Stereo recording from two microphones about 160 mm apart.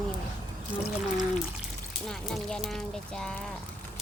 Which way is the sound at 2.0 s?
5° left (ahead or behind).